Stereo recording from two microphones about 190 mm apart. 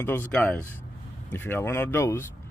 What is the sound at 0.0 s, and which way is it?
Speech, 10° left (ahead or behind).